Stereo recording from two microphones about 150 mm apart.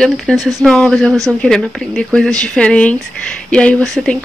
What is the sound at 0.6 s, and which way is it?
Speech, centre (ahead or behind).